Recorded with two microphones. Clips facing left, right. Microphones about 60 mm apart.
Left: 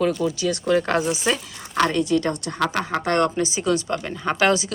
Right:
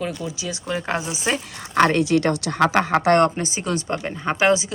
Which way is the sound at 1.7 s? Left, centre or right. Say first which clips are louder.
Right 4 dB; right.